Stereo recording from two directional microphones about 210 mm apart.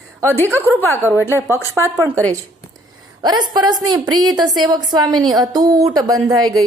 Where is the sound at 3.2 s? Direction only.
20° right (ahead or behind).